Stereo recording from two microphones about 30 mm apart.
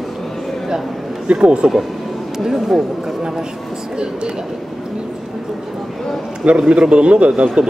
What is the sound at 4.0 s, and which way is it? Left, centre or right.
Speech, right.